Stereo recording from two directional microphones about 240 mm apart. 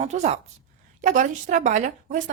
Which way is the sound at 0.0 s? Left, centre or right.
Right.